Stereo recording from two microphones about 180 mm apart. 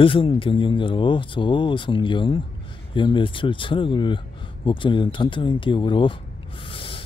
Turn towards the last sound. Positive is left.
turn(degrees=30)  # may be behind; listen again after turning